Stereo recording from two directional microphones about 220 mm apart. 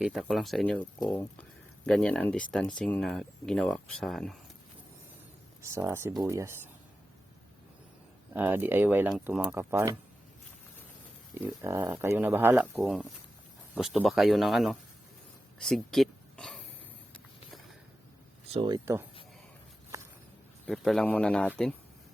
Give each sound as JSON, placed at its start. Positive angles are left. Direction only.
{"t": 0.0, "sound": "speech", "side_deg": 0}
{"t": 5.7, "sound": "speech", "side_deg": -10}
{"t": 8.3, "sound": "speech", "side_deg": -10}
{"t": 11.3, "sound": "speech", "side_deg": -10}
{"t": 12.8, "sound": "speech", "side_deg": 0}
{"t": 15.5, "sound": "a sound", "side_deg": 0}
{"t": 18.5, "sound": "speech", "side_deg": -20}
{"t": 20.7, "sound": "speech", "side_deg": 0}